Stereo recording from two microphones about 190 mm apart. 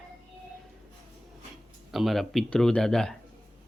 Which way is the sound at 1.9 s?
Centre (ahead or behind).